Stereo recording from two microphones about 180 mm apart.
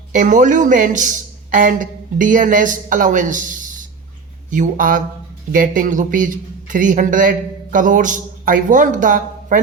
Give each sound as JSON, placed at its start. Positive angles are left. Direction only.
{"t": 0.1, "sound": "speech", "side_deg": -45}